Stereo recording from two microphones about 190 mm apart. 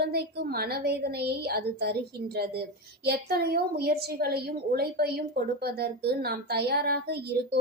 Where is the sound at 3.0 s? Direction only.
55° right (ahead or behind).